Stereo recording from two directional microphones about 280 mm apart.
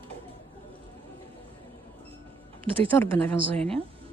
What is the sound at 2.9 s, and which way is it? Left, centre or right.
Speech, centre.